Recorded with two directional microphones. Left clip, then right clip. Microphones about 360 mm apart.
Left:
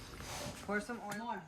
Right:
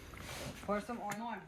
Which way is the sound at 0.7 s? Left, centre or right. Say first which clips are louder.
Right 1 dB; right.